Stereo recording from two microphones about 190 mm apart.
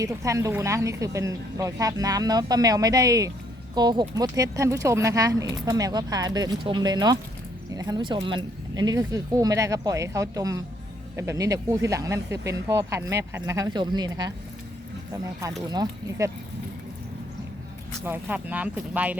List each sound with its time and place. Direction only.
0.0 s a woman's voice: 15° right (ahead or behind)
15.7 s speech: 20° right (ahead or behind)
18.0 s a woman's voice: 10° right (ahead or behind)